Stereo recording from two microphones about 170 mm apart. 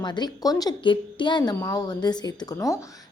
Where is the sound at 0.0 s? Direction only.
25° left (ahead or behind).